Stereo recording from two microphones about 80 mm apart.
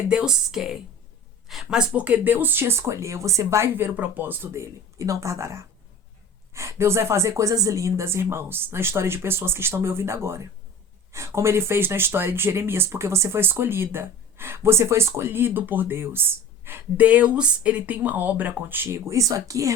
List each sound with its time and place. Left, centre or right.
0.1 s speech: centre
1.9 s speech: centre
17.1 s speech: centre; by 19.7 s right